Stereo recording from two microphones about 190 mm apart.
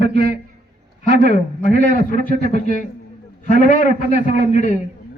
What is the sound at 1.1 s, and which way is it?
A man's voice, 45° left (ahead or behind).